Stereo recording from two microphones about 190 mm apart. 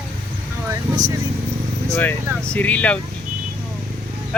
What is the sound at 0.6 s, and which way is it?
Speech, 20° right (ahead or behind).